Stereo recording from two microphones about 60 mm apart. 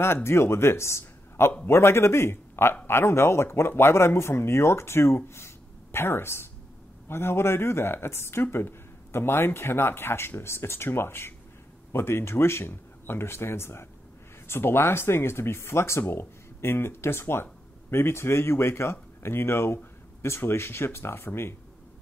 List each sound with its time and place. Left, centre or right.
0.0 s a man's voice: left